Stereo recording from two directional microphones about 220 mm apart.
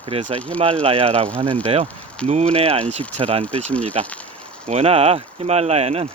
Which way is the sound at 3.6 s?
5° left (ahead or behind).